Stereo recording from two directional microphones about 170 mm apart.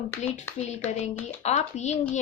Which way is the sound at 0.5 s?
45° left (ahead or behind).